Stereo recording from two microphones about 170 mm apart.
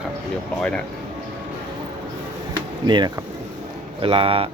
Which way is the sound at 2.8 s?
25° right (ahead or behind).